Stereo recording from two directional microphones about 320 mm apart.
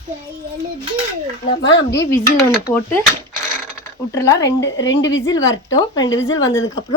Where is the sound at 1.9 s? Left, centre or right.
Centre.